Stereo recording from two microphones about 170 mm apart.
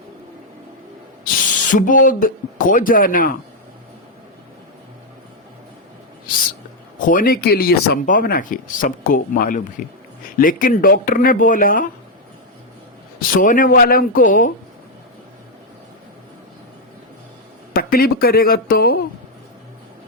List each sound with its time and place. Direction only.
1.7 s speech: 50° left (ahead or behind)
7.0 s speech: 55° left (ahead or behind)
13.1 s speech: 55° left (ahead or behind)
17.7 s speech: 60° left (ahead or behind)